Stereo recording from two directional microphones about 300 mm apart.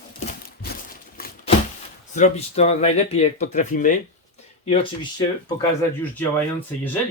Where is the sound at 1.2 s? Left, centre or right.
Left.